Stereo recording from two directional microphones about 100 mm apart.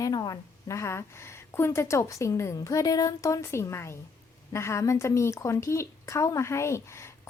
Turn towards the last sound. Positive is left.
turn(degrees=25)  # may be behind; listen again after turning